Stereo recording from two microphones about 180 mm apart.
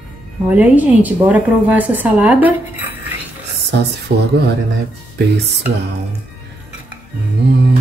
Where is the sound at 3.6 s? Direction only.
65° right (ahead or behind).